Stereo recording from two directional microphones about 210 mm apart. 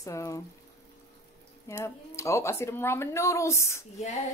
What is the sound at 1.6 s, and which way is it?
Speech, 15° left (ahead or behind).